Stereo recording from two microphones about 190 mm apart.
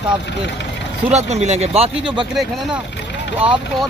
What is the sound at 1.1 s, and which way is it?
Speech, 35° right (ahead or behind).